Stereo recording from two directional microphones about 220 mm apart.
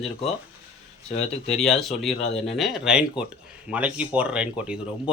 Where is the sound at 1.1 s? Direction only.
30° left (ahead or behind).